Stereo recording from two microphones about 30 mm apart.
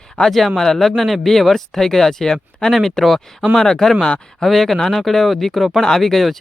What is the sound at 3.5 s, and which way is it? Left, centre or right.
Speech, centre.